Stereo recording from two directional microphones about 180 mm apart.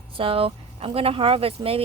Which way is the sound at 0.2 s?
30° right (ahead or behind).